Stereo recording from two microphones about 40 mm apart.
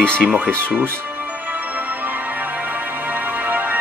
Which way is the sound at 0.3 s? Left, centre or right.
Right.